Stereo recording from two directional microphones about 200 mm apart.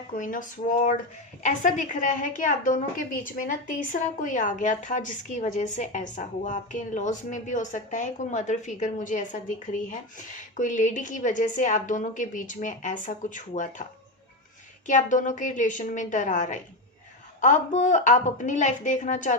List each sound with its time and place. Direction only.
0.1 s a woman's voice: 40° left (ahead or behind)
14.8 s a woman's voice: 40° left (ahead or behind)